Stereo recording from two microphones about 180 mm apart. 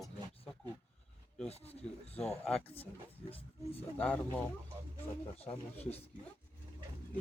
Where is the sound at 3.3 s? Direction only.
35° left (ahead or behind).